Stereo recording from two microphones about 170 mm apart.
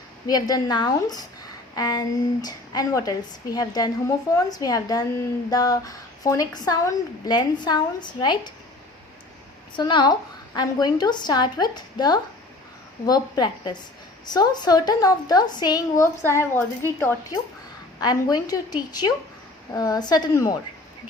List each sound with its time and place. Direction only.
0.3 s speech: 20° left (ahead or behind)
9.7 s speech: 25° left (ahead or behind)
18.0 s speech: 25° left (ahead or behind)